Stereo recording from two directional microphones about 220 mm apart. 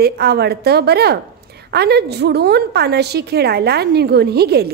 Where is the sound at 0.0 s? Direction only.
45° right (ahead or behind).